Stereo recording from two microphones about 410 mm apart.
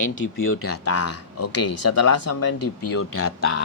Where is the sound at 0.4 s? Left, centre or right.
Left.